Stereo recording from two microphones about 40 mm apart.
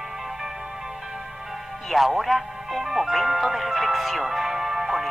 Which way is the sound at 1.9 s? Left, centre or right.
Centre.